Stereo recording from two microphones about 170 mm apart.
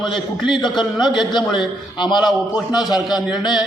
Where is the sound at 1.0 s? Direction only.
25° left (ahead or behind).